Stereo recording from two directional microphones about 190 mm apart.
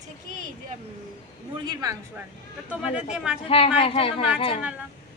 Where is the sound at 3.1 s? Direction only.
5° right (ahead or behind).